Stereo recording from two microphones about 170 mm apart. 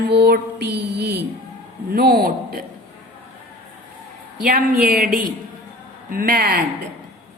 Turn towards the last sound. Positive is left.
turn(degrees=-65)  # may be behind; listen again after turning